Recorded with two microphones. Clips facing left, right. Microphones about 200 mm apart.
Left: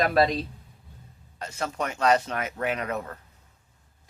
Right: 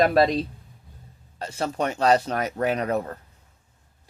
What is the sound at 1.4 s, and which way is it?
Speech, 30° right (ahead or behind).